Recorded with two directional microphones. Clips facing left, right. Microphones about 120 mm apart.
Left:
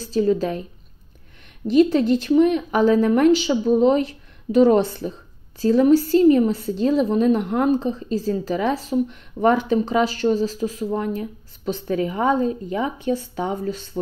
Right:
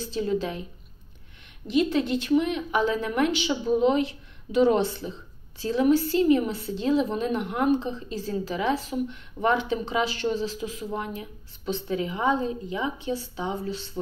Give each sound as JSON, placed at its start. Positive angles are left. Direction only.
{"t": 0.0, "sound": "speech", "side_deg": 40}
{"t": 1.7, "sound": "a woman's voice", "side_deg": 40}